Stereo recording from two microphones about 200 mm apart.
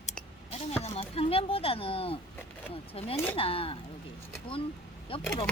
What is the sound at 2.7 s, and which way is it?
Speech, 30° left (ahead or behind).